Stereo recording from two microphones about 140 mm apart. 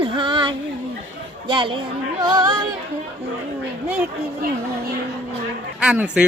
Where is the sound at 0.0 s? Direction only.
35° right (ahead or behind).